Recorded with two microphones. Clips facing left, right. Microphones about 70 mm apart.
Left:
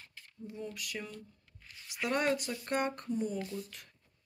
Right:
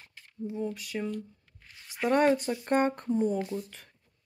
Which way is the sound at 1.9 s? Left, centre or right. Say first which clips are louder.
Right 7 dB; right.